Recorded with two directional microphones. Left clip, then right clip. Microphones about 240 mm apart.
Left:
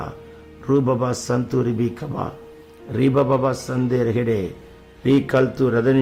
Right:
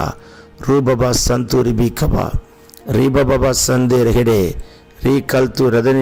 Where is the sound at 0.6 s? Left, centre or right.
Right.